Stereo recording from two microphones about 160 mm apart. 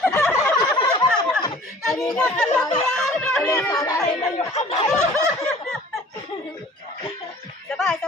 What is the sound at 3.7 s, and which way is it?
Speech, 20° left (ahead or behind).